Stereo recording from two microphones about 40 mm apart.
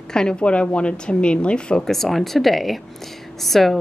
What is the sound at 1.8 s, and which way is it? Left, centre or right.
Speech, centre.